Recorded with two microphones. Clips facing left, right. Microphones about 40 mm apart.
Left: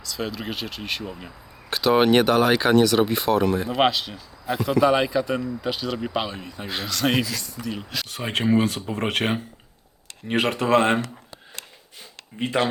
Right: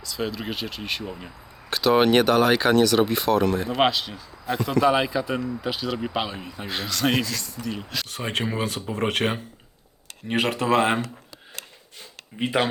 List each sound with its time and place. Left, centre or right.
0.0 s speech: centre
12.4 s speech: centre